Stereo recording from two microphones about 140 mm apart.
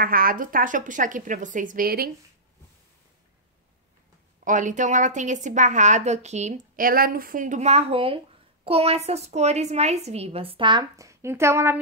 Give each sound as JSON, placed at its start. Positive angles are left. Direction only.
{"t": 0.0, "sound": "a woman's voice", "side_deg": -90}
{"t": 4.5, "sound": "a woman's voice", "side_deg": -65}
{"t": 6.8, "sound": "a woman's voice", "side_deg": -90}